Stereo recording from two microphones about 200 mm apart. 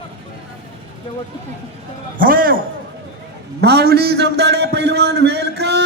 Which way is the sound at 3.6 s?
55° right (ahead or behind).